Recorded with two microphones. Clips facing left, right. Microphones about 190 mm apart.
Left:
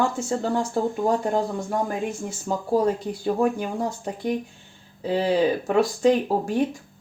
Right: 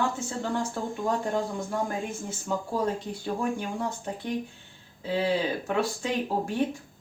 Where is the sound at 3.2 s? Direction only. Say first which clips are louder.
Left 8 dB; 40° left (ahead or behind).